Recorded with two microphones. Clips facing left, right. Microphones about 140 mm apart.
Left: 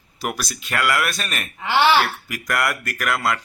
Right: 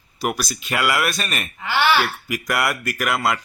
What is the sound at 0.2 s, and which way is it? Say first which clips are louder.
A man's voice: right 3 dB; centre (ahead or behind).